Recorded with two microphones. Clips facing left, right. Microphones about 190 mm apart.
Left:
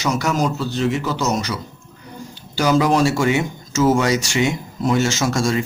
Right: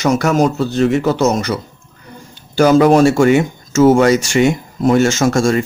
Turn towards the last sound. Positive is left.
turn(degrees=-50)  # may be behind; listen again after turning